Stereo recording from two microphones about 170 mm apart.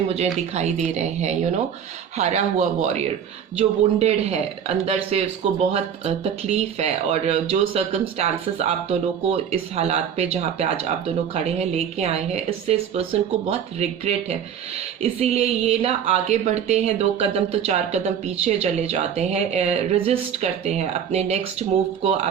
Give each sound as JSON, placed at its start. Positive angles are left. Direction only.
{"t": 0.1, "sound": "a man's voice", "side_deg": -40}